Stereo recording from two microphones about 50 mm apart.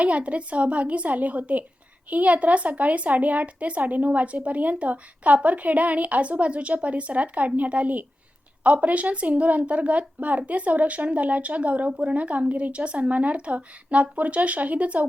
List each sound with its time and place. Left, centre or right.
0.0 s a woman's voice: right